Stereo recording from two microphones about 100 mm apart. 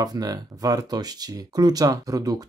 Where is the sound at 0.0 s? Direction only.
40° right (ahead or behind).